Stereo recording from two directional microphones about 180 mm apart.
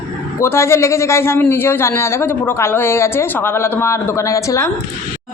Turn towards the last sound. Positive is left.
turn(degrees=15)  # may be behind; listen again after turning